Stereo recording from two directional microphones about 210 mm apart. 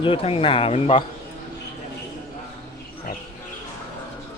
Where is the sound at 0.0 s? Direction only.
25° left (ahead or behind).